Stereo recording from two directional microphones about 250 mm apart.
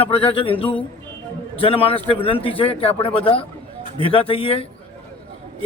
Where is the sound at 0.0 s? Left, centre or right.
Left.